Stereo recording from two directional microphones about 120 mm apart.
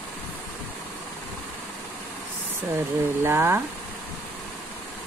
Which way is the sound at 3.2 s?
20° right (ahead or behind).